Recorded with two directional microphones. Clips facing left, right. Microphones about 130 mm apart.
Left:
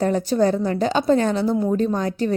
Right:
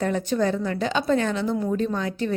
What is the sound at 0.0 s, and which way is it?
A woman's voice, 35° left (ahead or behind).